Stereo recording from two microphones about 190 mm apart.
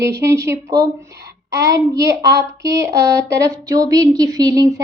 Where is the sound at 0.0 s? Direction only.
15° right (ahead or behind).